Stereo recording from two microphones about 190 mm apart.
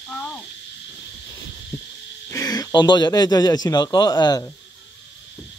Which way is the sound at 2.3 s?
20° left (ahead or behind).